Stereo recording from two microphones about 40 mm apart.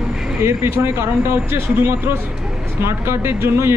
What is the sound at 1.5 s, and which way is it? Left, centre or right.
Speech, right.